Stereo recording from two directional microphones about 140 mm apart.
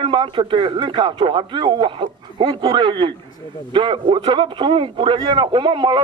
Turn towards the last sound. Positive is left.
turn(degrees=-35)  # may be behind; listen again after turning